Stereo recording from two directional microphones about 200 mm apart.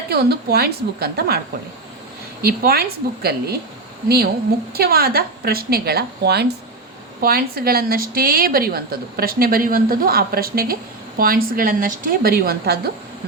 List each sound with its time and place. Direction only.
0.1 s a woman's voice: 50° right (ahead or behind)
2.4 s a woman's voice: 50° right (ahead or behind)
4.7 s a woman's voice: 50° right (ahead or behind)